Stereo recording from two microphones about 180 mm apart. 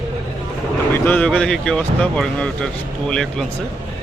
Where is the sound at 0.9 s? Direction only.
10° left (ahead or behind).